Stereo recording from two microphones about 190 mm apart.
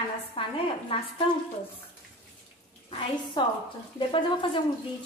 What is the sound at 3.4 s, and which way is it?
Speech, 25° left (ahead or behind).